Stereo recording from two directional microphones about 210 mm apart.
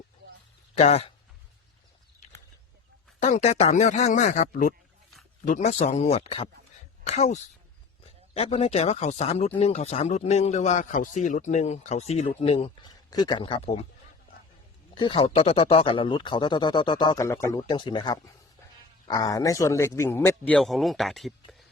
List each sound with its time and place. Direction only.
0.8 s speech: 30° left (ahead or behind)
3.2 s speech: 35° left (ahead or behind)
14.9 s a man's voice: 25° left (ahead or behind); by 21.7 s centre (ahead or behind)